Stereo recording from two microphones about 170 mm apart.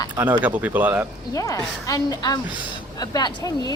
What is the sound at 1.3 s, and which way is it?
A woman's voice, 20° left (ahead or behind).